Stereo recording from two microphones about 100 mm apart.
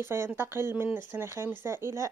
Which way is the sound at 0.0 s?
25° right (ahead or behind).